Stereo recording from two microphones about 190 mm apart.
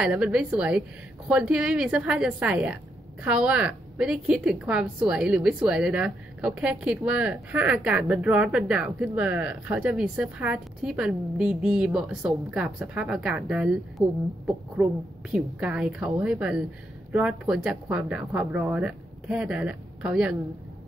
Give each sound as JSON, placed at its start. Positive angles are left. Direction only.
{"t": 0.0, "sound": "a woman's voice", "side_deg": -5}